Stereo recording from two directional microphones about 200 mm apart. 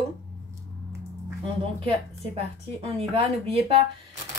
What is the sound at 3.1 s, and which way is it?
Speech, 30° right (ahead or behind).